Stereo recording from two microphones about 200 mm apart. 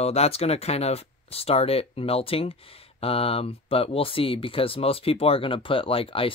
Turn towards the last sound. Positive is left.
turn(degrees=25)  # may be behind; listen again after turning